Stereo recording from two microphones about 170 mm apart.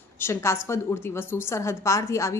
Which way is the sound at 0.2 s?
15° left (ahead or behind).